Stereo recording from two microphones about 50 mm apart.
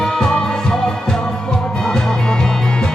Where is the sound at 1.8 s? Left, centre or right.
Centre.